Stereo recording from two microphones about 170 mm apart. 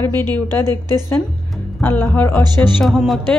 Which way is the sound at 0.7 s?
25° right (ahead or behind).